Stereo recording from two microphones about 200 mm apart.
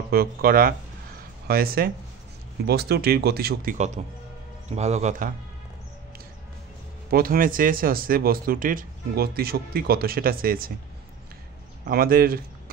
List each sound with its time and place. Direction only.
0.1 s a man's voice: 50° right (ahead or behind)
7.1 s speech: 45° right (ahead or behind)
11.8 s speech: 45° right (ahead or behind)